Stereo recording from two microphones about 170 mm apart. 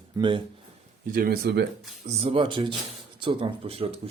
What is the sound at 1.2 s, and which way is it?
Speech, 70° right (ahead or behind).